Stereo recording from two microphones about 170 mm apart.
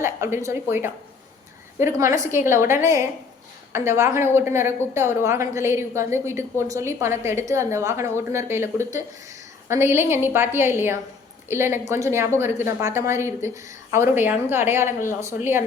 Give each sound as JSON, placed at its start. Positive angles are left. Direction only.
{"t": 0.0, "sound": "a woman's voice", "side_deg": -15}